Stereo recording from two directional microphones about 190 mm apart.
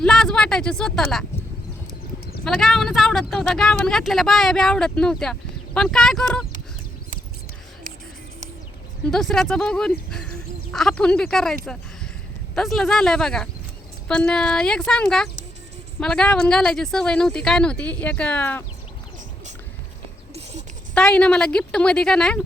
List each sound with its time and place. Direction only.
0.0 s speech: centre (ahead or behind)
2.4 s speech: centre (ahead or behind)
9.0 s speech: centre (ahead or behind)
10.1 s a sound: 5° left (ahead or behind)
12.5 s speech: centre (ahead or behind)
20.3 s a sound: 35° right (ahead or behind)
20.9 s speech: 5° left (ahead or behind)